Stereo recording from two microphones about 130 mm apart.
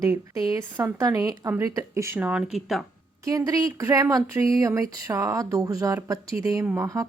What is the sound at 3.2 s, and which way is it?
Speech, 25° right (ahead or behind).